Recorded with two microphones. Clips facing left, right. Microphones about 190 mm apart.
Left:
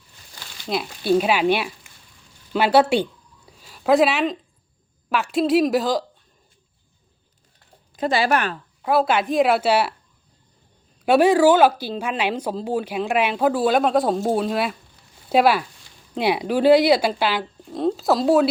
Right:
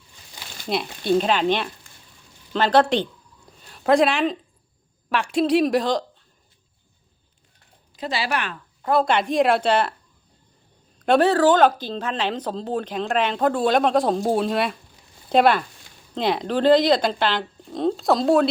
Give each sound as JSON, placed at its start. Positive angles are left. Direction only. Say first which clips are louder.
{"t": 0.7, "sound": "a woman's voice", "louder": "left 1 dB", "side_deg": 5}
{"t": 7.9, "sound": "speech", "louder": "left 6 dB", "side_deg": 50}
{"t": 8.8, "sound": "a woman's voice", "louder": "left 1 dB", "side_deg": 5}
{"t": 11.0, "sound": "a woman's voice", "louder": "left 2 dB", "side_deg": 10}